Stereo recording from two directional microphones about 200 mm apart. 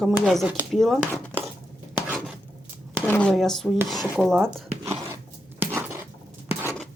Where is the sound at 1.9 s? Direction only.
10° right (ahead or behind).